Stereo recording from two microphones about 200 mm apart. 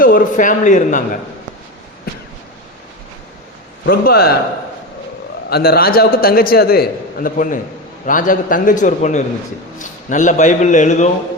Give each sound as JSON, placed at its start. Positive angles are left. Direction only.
{"t": 0.0, "sound": "a man's voice", "side_deg": 45}
{"t": 3.8, "sound": "a man's voice", "side_deg": 50}
{"t": 5.5, "sound": "a man's voice", "side_deg": 50}